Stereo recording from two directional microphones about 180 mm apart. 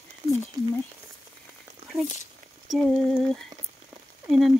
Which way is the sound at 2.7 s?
Centre (ahead or behind).